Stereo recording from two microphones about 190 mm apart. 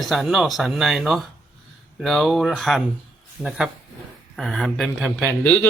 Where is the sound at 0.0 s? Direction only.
Centre (ahead or behind).